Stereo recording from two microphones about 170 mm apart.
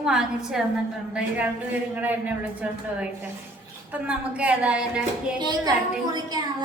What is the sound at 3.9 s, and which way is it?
Speech, 5° right (ahead or behind).